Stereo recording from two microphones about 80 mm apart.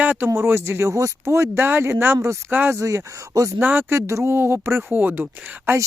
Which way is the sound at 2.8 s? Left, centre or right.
Right.